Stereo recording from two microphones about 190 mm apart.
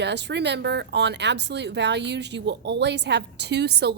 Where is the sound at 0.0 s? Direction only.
65° right (ahead or behind).